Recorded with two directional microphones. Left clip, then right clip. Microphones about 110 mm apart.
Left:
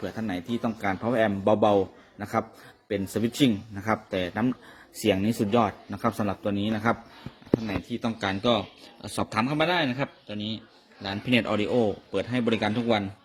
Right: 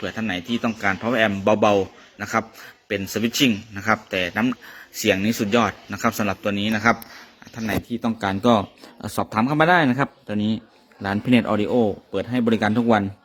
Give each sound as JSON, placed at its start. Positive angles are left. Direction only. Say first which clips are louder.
{"t": 0.0, "sound": "speech", "louder": "right 6 dB", "side_deg": 5}
{"t": 7.9, "sound": "speech", "louder": "right 5 dB", "side_deg": -15}
{"t": 8.4, "sound": "speech", "louder": "right 7 dB", "side_deg": -45}
{"t": 11.3, "sound": "speech", "louder": "right 4 dB", "side_deg": -30}
{"t": 12.5, "sound": "a man's voice", "louder": "right 6 dB", "side_deg": -30}
{"t": 12.7, "sound": "speech", "louder": "right 6 dB", "side_deg": -40}